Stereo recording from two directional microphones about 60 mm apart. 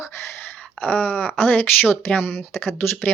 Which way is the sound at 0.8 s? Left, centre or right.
Left.